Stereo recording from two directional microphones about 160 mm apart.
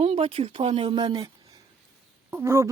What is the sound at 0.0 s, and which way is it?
Speech, 35° right (ahead or behind).